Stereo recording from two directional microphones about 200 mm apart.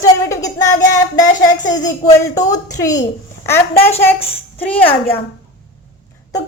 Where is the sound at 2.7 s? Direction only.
20° left (ahead or behind).